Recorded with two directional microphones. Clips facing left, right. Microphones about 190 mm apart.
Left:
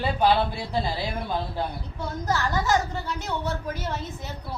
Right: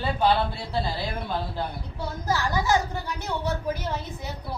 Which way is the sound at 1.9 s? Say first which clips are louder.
Even; 10° right (ahead or behind).